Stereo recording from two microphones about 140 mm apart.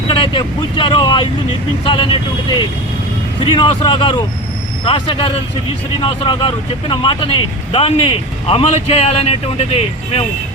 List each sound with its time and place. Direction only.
0.1 s speech: 40° left (ahead or behind)
3.4 s speech: 40° left (ahead or behind)